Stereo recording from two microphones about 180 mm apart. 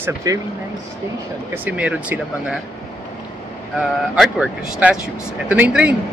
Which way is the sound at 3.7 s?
5° right (ahead or behind).